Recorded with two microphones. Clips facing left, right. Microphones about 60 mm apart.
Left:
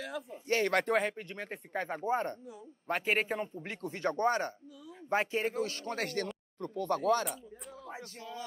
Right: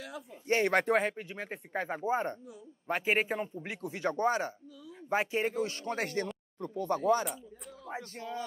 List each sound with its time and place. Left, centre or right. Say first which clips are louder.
0.0 s a sound: left 4 dB; left
0.5 s speech: right 2 dB; right
0.7 s speech: right 2 dB; centre
5.6 s speech: right 1 dB; right
7.9 s music: right 6 dB; right